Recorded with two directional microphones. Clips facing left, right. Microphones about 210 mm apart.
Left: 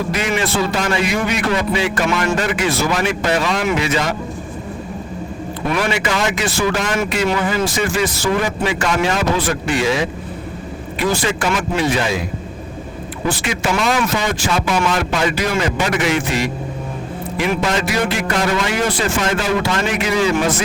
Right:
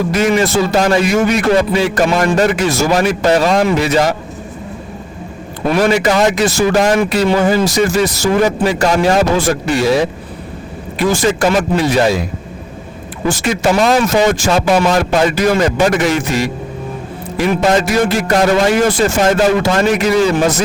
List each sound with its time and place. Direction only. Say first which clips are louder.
0.1 s a man's voice: right 6 dB; 40° right (ahead or behind)
5.6 s a man's voice: right 7 dB; 40° right (ahead or behind)
11.1 s a man's voice: right 7 dB; 40° right (ahead or behind)
13.2 s a man's voice: right 6 dB; 40° right (ahead or behind)